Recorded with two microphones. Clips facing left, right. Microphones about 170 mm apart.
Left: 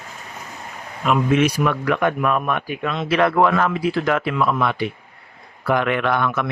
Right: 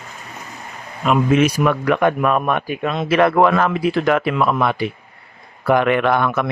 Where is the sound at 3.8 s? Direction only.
60° right (ahead or behind).